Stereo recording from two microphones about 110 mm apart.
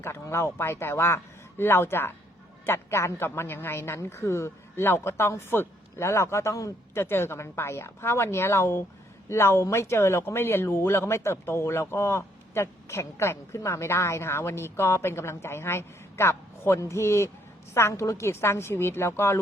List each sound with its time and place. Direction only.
0.0 s speech: 25° left (ahead or behind)